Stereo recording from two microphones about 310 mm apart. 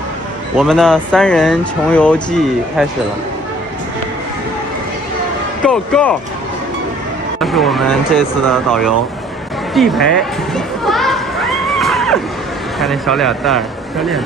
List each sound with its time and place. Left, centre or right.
0.6 s speech: centre
5.6 s speech: centre
7.3 s speech: centre
10.5 s a sound: centre
12.8 s speech: centre